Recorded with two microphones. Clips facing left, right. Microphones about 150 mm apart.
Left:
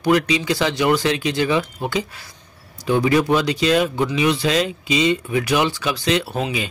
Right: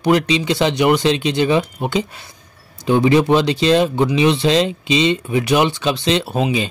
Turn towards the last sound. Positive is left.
turn(degrees=-25)  # may be behind; listen again after turning